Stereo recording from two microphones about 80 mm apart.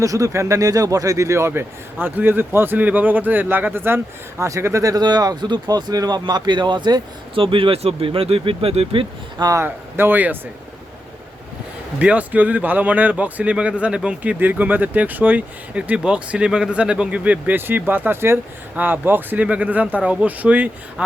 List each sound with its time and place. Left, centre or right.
0.0 s speech: right
8.9 s speech: right
9.6 s speech: right
11.9 s speech: centre